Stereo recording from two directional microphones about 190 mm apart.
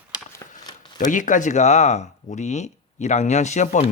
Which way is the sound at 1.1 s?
45° left (ahead or behind).